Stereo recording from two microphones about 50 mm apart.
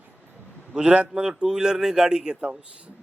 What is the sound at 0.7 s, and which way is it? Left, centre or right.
A man's voice, right.